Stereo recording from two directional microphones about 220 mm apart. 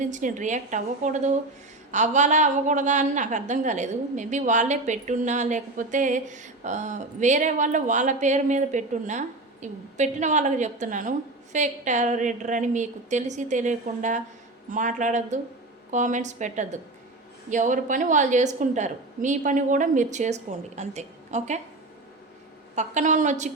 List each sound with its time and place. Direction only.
0.0 s a woman's voice: 35° right (ahead or behind)
22.7 s a woman's voice: 35° right (ahead or behind)